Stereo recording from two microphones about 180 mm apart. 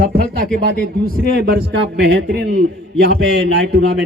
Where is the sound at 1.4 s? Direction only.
70° right (ahead or behind).